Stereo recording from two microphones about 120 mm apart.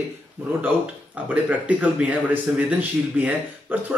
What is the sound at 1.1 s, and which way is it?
A man's voice, 15° right (ahead or behind).